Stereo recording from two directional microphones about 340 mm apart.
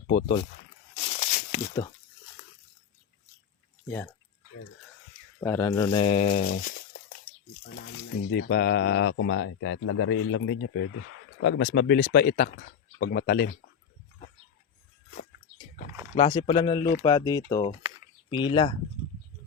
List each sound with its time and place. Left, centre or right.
0.1 s speech: centre
1.1 s a sound: left
3.8 s speech: centre
5.4 s speech: centre; by 13.6 s left
16.1 s speech: centre